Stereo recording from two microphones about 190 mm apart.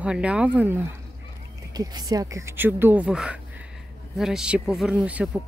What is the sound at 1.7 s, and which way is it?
Speech, 20° right (ahead or behind).